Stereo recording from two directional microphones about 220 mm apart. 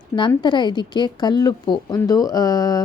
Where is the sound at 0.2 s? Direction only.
20° left (ahead or behind).